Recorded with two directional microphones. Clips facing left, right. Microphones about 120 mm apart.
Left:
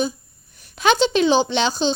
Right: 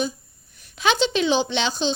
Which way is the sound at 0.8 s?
45° left (ahead or behind).